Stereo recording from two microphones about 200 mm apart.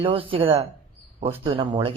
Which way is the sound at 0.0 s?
25° right (ahead or behind).